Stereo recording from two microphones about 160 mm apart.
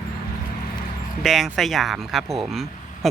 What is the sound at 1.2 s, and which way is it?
Speech, centre (ahead or behind).